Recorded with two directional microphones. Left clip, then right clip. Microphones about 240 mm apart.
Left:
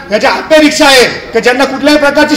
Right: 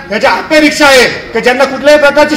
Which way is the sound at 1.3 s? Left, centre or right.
Left.